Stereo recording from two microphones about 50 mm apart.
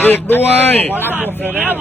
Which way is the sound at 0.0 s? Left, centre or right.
Left.